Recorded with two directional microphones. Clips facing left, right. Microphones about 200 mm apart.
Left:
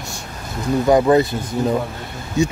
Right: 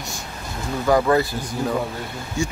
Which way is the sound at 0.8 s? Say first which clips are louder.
Left 4 dB; 20° left (ahead or behind).